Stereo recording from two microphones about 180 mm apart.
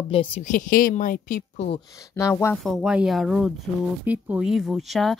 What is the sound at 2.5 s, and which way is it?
Speech, centre (ahead or behind).